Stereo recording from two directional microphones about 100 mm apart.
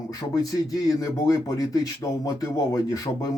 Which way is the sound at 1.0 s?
35° left (ahead or behind).